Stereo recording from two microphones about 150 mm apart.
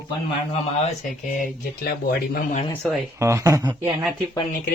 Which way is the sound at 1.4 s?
85° left.